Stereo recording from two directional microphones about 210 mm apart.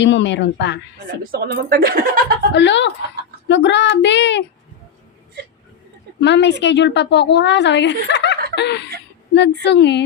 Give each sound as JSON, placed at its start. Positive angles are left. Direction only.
{"t": 0.0, "sound": "a woman's voice", "side_deg": 60}
{"t": 1.2, "sound": "speech", "side_deg": -45}
{"t": 2.6, "sound": "a woman's voice", "side_deg": 60}
{"t": 6.1, "sound": "a woman's voice", "side_deg": 55}
{"t": 8.5, "sound": "snicker", "side_deg": 55}
{"t": 9.3, "sound": "a woman's voice", "side_deg": 55}